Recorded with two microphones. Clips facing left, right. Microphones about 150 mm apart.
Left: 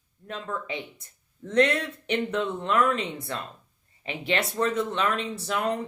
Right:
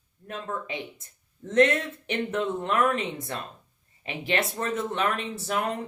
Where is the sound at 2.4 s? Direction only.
50° right (ahead or behind).